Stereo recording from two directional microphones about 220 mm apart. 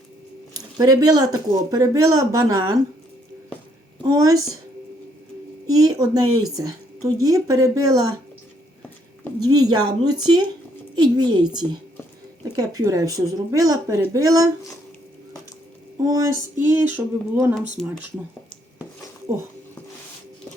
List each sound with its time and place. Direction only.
0.5 s a woman's voice: 15° right (ahead or behind)
4.0 s a woman's voice: 15° right (ahead or behind)
5.6 s a woman's voice: 15° right (ahead or behind)
9.4 s a woman's voice: 15° right (ahead or behind)
16.0 s a woman's voice: 15° right (ahead or behind)
17.8 s speech: 5° left (ahead or behind)